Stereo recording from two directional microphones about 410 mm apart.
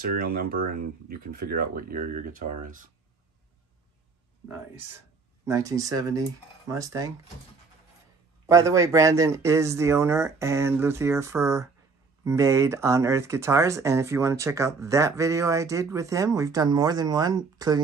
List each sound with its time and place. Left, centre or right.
0.0 s speech: right
5.4 s speech: centre
8.5 s speech: centre